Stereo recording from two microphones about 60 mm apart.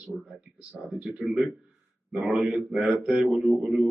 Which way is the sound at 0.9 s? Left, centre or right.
Centre.